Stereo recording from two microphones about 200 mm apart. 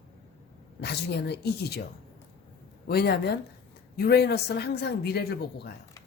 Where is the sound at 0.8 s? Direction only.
60° left (ahead or behind).